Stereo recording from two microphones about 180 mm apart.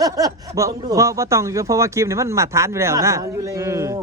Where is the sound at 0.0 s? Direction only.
20° right (ahead or behind).